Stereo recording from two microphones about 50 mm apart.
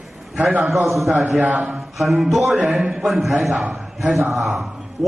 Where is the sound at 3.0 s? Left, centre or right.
Centre.